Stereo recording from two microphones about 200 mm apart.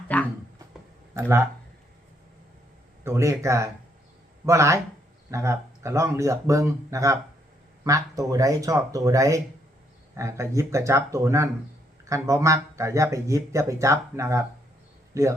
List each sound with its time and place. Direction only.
0.1 s a sound: 10° left (ahead or behind)
1.1 s speech: 10° right (ahead or behind)
3.0 s speech: 15° right (ahead or behind)